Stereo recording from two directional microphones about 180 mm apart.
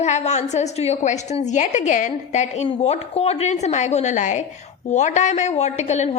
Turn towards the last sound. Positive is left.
turn(degrees=40)  # may be behind; listen again after turning